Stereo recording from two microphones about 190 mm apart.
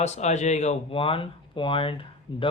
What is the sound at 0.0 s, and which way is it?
Speech, 35° left (ahead or behind).